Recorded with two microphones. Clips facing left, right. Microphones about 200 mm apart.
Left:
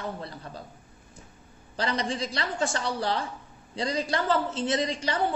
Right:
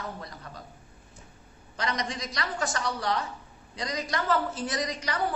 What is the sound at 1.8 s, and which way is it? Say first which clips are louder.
A woman's voice: left 3 dB; 30° left (ahead or behind).